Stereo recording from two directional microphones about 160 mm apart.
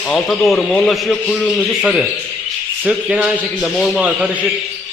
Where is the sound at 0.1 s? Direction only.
Centre (ahead or behind).